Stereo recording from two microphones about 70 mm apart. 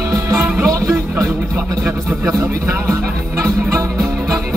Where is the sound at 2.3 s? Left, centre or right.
Right.